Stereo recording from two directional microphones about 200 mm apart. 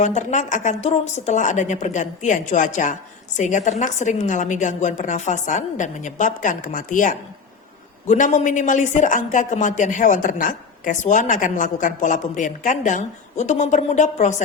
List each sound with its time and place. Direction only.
0.0 s speech: 35° left (ahead or behind)